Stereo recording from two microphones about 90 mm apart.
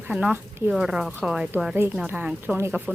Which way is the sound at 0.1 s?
15° right (ahead or behind).